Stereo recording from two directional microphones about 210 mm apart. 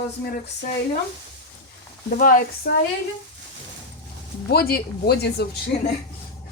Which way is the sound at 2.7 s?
55° left (ahead or behind).